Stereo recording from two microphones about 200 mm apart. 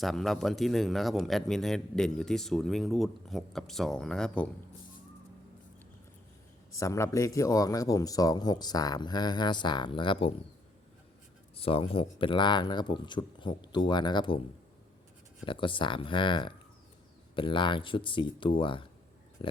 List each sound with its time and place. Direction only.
0.0 s speech: centre (ahead or behind)
6.7 s speech: 15° left (ahead or behind)
11.5 s speech: 30° left (ahead or behind)
15.4 s speech: 25° left (ahead or behind)